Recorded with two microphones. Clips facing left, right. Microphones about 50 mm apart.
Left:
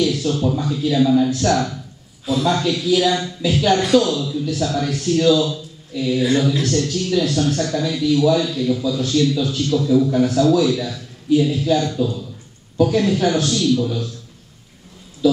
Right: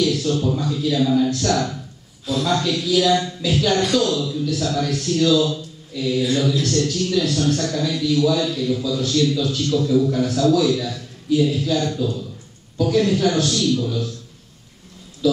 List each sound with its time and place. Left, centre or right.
0.0 s a man's voice: centre
5.4 s a sound: centre
6.1 s speech: left
6.6 s a man's voice: centre